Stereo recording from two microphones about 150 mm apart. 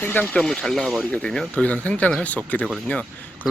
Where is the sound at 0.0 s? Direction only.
10° left (ahead or behind).